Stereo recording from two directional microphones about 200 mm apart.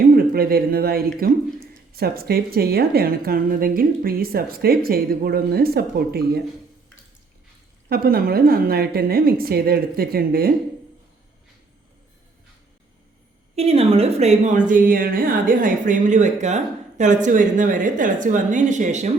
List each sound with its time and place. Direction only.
0.2 s a woman's voice: 50° right (ahead or behind)
7.9 s a woman's voice: 50° right (ahead or behind)
13.6 s a woman's voice: 30° right (ahead or behind)